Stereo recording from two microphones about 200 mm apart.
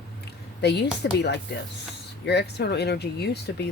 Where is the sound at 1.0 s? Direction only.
55° left (ahead or behind).